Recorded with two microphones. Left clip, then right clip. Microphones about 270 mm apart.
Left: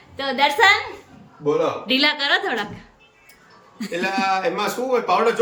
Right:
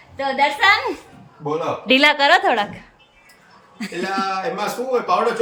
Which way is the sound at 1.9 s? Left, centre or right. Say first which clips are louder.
Right 7 dB; centre.